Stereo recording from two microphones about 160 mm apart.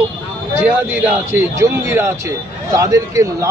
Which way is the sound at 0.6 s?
10° right (ahead or behind).